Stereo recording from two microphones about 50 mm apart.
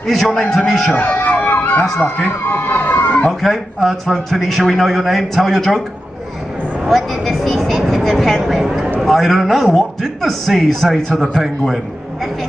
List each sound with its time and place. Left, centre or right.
0.0 s a man's voice: centre
0.9 s a sound: left
2.4 s emergency vehicle: left
3.3 s a man's voice: centre
6.9 s a man's voice: centre
8.6 s a man's voice: centre
9.0 s a man's voice: centre